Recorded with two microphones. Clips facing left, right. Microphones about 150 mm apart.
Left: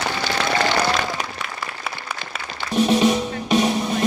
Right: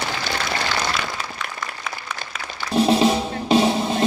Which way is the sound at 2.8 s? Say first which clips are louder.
Even; 30° right (ahead or behind).